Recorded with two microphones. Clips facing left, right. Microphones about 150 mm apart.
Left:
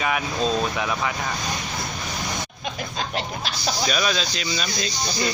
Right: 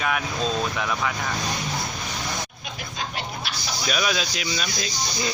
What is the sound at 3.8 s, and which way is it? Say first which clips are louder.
Speech: even; 5° right (ahead or behind).